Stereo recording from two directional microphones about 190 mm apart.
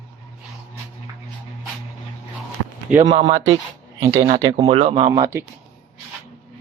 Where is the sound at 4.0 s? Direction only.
15° right (ahead or behind).